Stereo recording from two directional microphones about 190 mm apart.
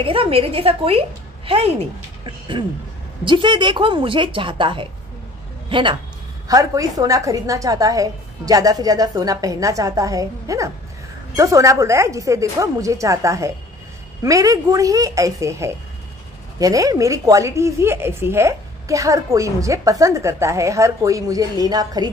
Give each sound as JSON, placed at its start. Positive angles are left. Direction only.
{"t": 0.0, "sound": "a woman's voice", "side_deg": -30}